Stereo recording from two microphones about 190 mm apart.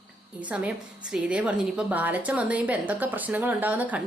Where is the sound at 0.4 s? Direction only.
10° right (ahead or behind).